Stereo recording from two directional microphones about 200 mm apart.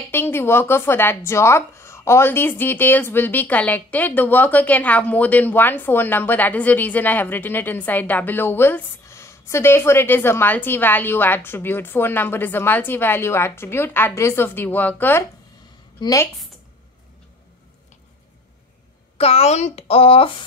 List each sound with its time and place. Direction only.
0.1 s speech: 10° left (ahead or behind)
19.1 s a woman's voice: 30° left (ahead or behind)